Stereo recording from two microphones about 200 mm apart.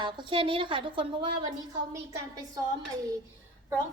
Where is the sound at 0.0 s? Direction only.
25° right (ahead or behind).